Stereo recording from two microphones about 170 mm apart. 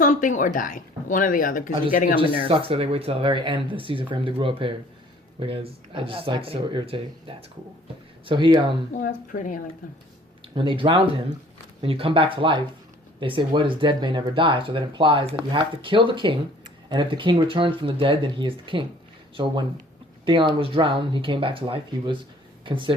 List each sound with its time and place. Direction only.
0.0 s a woman's voice: 50° left (ahead or behind)
2.1 s speech: 30° right (ahead or behind)
8.9 s a woman's voice: 55° left (ahead or behind)
10.4 s speech: 30° right (ahead or behind)